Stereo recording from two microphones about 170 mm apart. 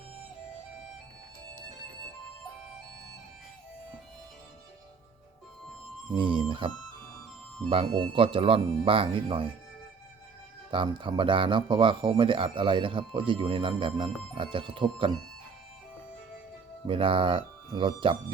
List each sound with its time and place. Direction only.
6.1 s speech: 30° right (ahead or behind)
7.9 s speech: 30° right (ahead or behind)
10.7 s speech: 30° right (ahead or behind)
16.8 s speech: 30° right (ahead or behind)